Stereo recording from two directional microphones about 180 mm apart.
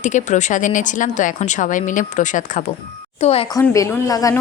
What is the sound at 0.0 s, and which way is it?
Speech, 45° left (ahead or behind).